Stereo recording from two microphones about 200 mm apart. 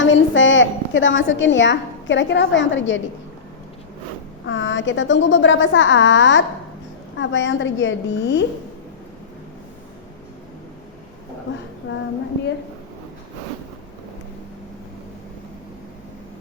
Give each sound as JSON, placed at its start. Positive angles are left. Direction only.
{"t": 0.0, "sound": "a woman's voice", "side_deg": 70}
{"t": 4.4, "sound": "a woman's voice", "side_deg": 65}
{"t": 11.9, "sound": "a woman's voice", "side_deg": 55}